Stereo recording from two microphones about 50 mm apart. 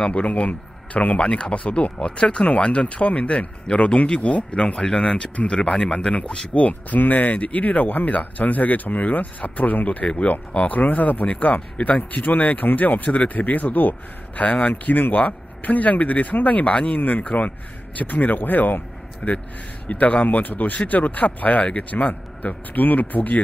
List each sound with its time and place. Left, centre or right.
0.0 s speech: left